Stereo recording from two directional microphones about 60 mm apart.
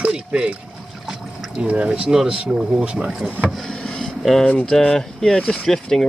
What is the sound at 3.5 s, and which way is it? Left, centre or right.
Speech, centre.